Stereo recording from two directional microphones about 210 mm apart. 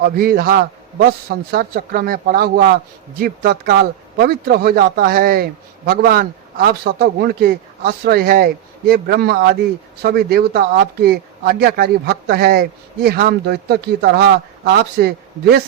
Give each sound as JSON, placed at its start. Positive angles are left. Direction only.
{"t": 0.0, "sound": "speech", "side_deg": -45}